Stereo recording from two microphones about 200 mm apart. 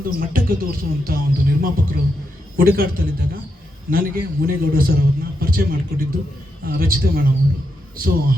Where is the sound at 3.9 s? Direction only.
45° right (ahead or behind).